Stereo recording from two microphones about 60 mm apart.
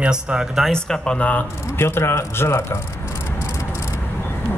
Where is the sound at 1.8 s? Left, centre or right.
Left.